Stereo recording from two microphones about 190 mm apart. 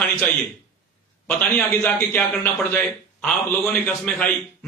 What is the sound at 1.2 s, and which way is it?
A man's voice, 10° left (ahead or behind).